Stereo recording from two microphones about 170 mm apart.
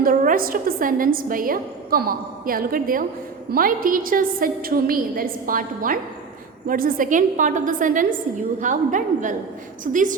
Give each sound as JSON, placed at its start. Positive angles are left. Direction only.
{"t": 0.0, "sound": "a woman's voice", "side_deg": -55}